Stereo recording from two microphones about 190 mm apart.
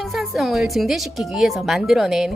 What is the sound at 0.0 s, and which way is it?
Speech, centre (ahead or behind).